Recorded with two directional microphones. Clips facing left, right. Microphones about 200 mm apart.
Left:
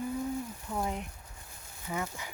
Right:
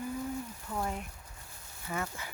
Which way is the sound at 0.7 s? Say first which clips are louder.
Left 1 dB; 15° left (ahead or behind).